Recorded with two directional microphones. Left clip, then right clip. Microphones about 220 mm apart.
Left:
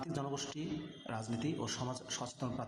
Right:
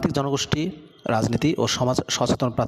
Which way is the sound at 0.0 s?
45° right (ahead or behind).